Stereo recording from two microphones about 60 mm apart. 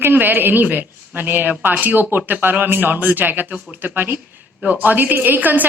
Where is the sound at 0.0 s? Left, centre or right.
Right.